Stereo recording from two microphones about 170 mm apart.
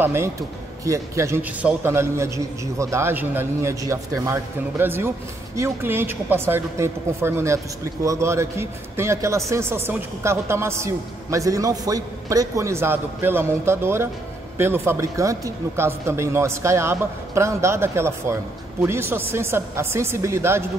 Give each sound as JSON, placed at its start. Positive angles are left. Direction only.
{"t": 0.0, "sound": "a man's voice", "side_deg": -15}